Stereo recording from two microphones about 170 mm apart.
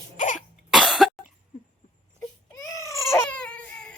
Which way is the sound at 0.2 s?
50° left (ahead or behind).